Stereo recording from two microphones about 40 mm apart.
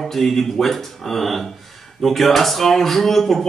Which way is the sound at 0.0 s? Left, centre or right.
Centre.